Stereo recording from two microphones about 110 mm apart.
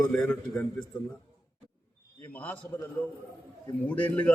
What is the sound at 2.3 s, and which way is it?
Speech, 15° left (ahead or behind).